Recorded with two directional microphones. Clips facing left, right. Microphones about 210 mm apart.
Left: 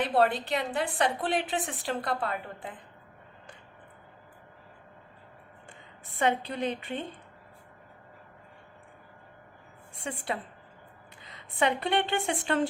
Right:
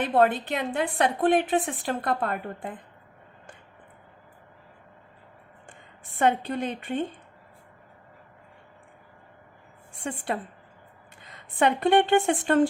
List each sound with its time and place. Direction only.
0.0 s a woman's voice: 55° right (ahead or behind)
6.1 s a woman's voice: 50° right (ahead or behind)
10.0 s a woman's voice: 50° right (ahead or behind)